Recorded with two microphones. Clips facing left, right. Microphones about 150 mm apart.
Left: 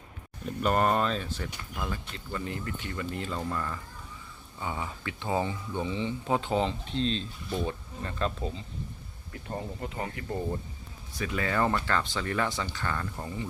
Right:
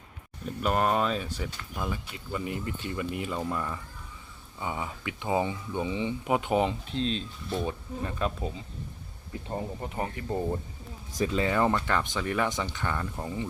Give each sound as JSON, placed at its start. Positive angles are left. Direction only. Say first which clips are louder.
{"t": 0.6, "sound": "speech", "louder": "even", "side_deg": 0}
{"t": 6.8, "sound": "speech", "louder": "even", "side_deg": -5}
{"t": 9.5, "sound": "speech", "louder": "right 1 dB", "side_deg": -20}